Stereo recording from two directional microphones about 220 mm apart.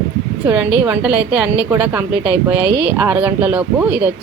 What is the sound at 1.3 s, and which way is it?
Speech, 5° right (ahead or behind).